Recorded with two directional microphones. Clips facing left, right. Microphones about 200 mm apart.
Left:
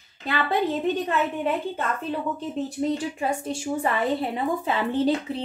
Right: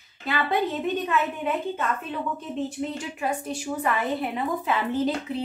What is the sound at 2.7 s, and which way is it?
A woman's voice, 30° left (ahead or behind).